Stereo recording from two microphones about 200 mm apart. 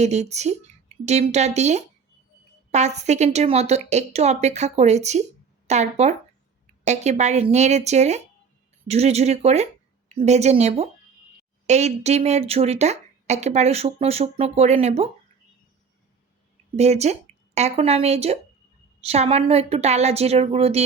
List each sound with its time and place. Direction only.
0.0 s speech: 35° right (ahead or behind)
16.7 s speech: 35° right (ahead or behind)